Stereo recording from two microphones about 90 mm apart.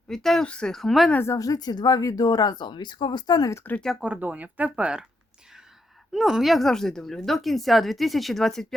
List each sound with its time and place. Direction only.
0.1 s speech: 5° left (ahead or behind)
1.1 s speech: 30° left (ahead or behind)
1.4 s speech: 45° left (ahead or behind)
3.5 s speech: 20° left (ahead or behind)
4.0 s speech: 15° right (ahead or behind)
6.1 s speech: 5° right (ahead or behind)